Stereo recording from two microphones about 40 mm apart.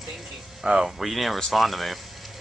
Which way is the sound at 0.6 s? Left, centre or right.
Centre.